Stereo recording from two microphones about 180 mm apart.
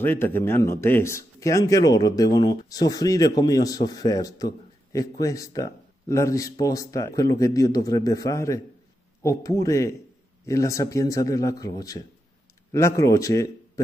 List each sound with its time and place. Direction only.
0.0 s speech: 10° left (ahead or behind)